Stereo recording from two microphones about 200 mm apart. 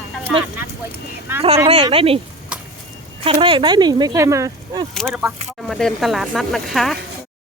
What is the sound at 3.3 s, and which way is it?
Speech, 25° right (ahead or behind).